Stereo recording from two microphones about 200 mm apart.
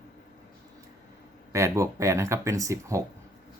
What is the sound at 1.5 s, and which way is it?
Speech, 15° right (ahead or behind).